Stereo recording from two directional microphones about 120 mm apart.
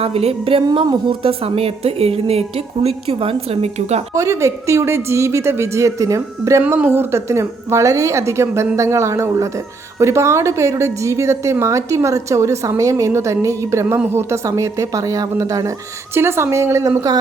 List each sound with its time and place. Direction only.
0.0 s a woman's voice: 55° right (ahead or behind)
4.1 s a woman's voice: 25° right (ahead or behind)
6.6 s a woman's voice: 15° right (ahead or behind)